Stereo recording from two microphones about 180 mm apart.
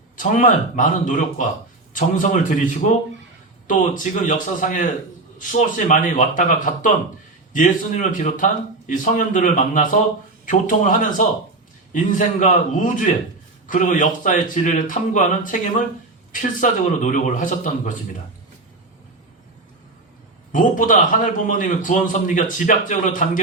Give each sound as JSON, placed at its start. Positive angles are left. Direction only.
{"t": 0.2, "sound": "a man's voice", "side_deg": 45}
{"t": 20.5, "sound": "a man's voice", "side_deg": 45}